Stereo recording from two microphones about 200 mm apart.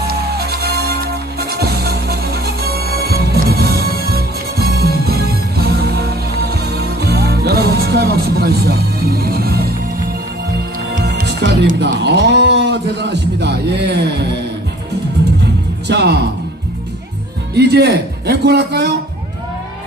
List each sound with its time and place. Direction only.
0.0 s music: 50° right (ahead or behind)
11.1 s music: 55° right (ahead or behind)
15.4 s music: 60° right (ahead or behind)
17.6 s a sound: 55° right (ahead or behind)